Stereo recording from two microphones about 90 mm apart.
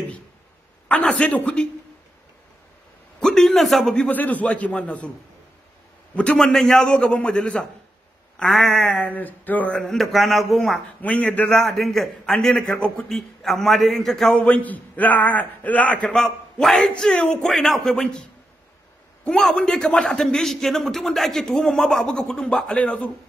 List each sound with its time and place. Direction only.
0.8 s speech: 15° left (ahead or behind)
3.2 s a man's voice: 5° left (ahead or behind)
6.1 s a man's voice: 10° left (ahead or behind)
11.0 s a man's voice: 15° left (ahead or behind)
14.3 s a man's voice: 15° left (ahead or behind)
19.2 s a man's voice: 5° left (ahead or behind)